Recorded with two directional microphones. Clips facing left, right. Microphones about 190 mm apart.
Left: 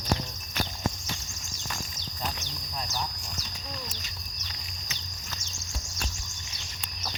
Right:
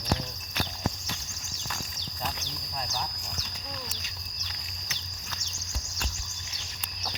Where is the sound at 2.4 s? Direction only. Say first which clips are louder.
Even; 60° right (ahead or behind).